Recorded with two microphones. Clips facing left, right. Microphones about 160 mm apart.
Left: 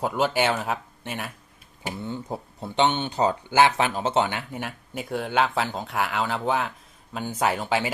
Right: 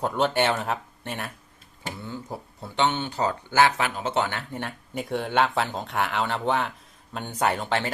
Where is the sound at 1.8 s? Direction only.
20° left (ahead or behind).